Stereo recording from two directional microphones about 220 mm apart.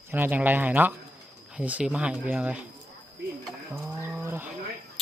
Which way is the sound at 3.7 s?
10° right (ahead or behind).